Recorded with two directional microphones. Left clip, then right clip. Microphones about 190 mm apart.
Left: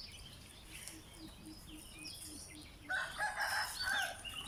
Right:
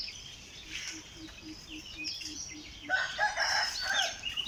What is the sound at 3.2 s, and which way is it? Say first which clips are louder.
Crowing: right 9 dB; 35° right (ahead or behind).